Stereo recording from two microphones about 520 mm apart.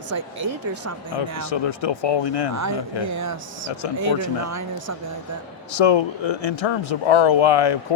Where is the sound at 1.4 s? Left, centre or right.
Left.